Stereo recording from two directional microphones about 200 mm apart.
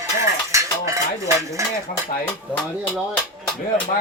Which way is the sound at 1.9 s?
45° left (ahead or behind).